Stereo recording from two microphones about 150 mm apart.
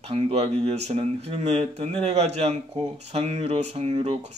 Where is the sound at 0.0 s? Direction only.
40° right (ahead or behind).